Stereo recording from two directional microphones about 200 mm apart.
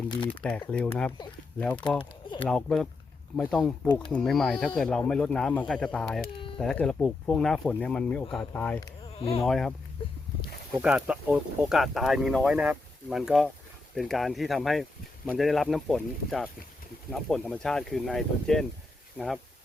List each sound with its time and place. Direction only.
0.7 s speech: 5° left (ahead or behind)
9.1 s speech: 30° left (ahead or behind)
9.4 s speech: centre (ahead or behind)
10.8 s speech: 5° right (ahead or behind)